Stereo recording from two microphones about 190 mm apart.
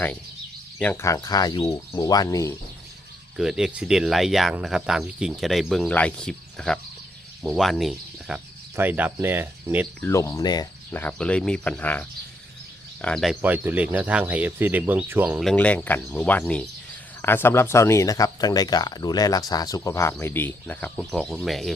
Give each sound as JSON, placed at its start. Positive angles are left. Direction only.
{"t": 0.8, "sound": "speech", "side_deg": 10}
{"t": 3.3, "sound": "speech", "side_deg": -5}
{"t": 10.0, "sound": "speech", "side_deg": 15}
{"t": 10.9, "sound": "speech", "side_deg": 5}
{"t": 13.4, "sound": "speech", "side_deg": -10}
{"t": 15.4, "sound": "speech", "side_deg": 5}